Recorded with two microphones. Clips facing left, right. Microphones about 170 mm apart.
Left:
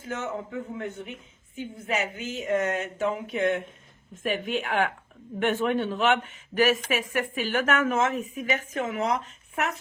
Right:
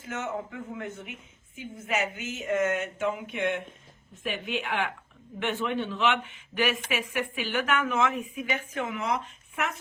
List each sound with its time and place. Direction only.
0.0 s a woman's voice: 35° left (ahead or behind)